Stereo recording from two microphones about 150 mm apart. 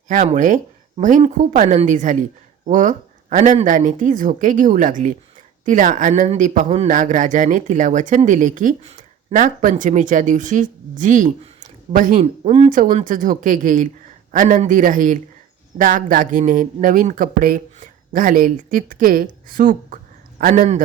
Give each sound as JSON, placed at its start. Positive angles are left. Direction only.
{"t": 0.1, "sound": "speech", "side_deg": -60}
{"t": 9.3, "sound": "speech", "side_deg": -60}
{"t": 12.5, "sound": "speech", "side_deg": -40}
{"t": 13.1, "sound": "speech", "side_deg": -65}